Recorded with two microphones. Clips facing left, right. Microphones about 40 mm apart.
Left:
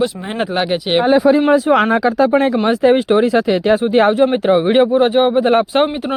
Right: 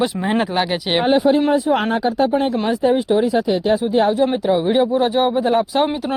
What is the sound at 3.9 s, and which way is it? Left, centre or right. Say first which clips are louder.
Speech: left 4 dB; left.